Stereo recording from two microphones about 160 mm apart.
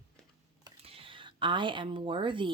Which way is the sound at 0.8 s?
35° right (ahead or behind).